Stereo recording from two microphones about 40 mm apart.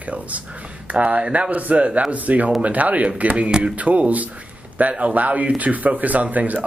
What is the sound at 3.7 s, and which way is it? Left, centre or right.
A man's voice, right.